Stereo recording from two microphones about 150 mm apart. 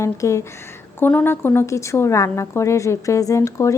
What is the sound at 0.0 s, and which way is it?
A woman's voice, 20° left (ahead or behind).